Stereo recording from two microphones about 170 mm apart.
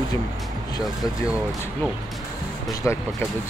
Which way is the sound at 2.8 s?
10° left (ahead or behind).